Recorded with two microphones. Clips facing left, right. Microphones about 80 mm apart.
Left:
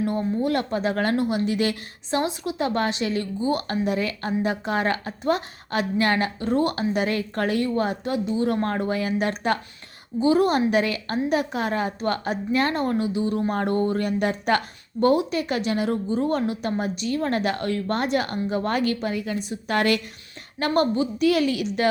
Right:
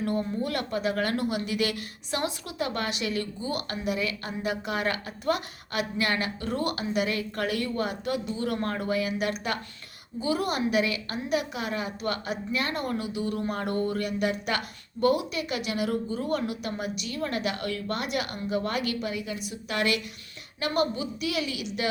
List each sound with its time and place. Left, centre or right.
0.0 s speech: left